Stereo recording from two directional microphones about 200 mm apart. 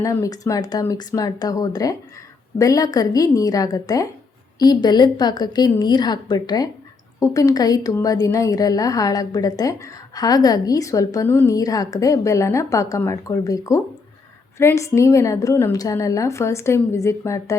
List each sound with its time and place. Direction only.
0.0 s a woman's voice: 15° left (ahead or behind)